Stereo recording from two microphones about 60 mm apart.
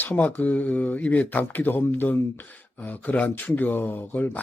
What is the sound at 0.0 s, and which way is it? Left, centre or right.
Speech, left.